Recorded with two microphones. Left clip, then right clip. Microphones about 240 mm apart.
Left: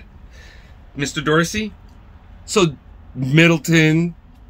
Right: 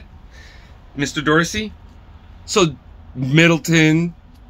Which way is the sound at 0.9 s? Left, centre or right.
Centre.